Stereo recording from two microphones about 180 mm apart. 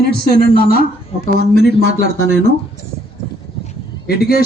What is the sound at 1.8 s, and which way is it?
Speech, 75° right (ahead or behind).